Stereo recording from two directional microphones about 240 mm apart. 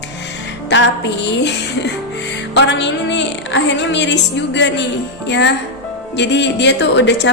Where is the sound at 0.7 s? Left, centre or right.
Left.